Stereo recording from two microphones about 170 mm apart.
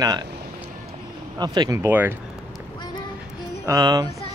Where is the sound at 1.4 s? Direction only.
25° right (ahead or behind).